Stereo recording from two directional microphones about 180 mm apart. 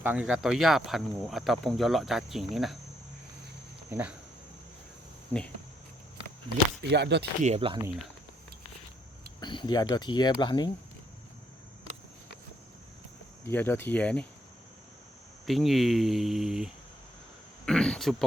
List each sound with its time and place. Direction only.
0.0 s speech: 10° right (ahead or behind)
3.8 s speech: 10° right (ahead or behind)
6.8 s speech: 70° right (ahead or behind)
7.4 s speech: 35° right (ahead or behind)
9.4 s speech: 25° left (ahead or behind)
13.4 s speech: 10° left (ahead or behind)
15.4 s speech: centre (ahead or behind)